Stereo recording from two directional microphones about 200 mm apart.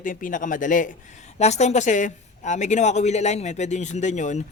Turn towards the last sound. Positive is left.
turn(degrees=35)  # may be behind; listen again after turning